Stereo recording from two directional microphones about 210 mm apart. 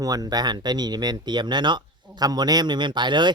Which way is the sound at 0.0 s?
15° right (ahead or behind).